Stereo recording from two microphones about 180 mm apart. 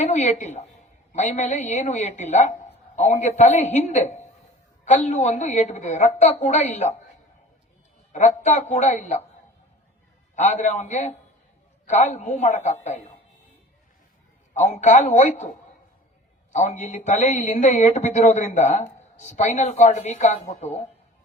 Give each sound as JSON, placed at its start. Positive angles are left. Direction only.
{"t": 0.0, "sound": "a man's voice", "side_deg": 40}
{"t": 8.1, "sound": "a man's voice", "side_deg": 40}
{"t": 10.3, "sound": "a man's voice", "side_deg": 40}
{"t": 14.5, "sound": "a man's voice", "side_deg": 40}